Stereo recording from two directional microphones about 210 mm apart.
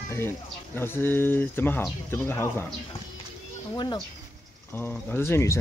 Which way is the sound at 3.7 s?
20° left (ahead or behind).